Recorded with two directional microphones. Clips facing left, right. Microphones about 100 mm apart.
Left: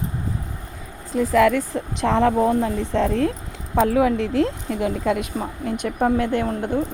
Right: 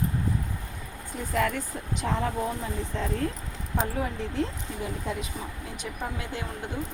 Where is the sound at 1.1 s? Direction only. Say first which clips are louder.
Left 11 dB; 90° left; by 5.2 s 75° left (ahead or behind).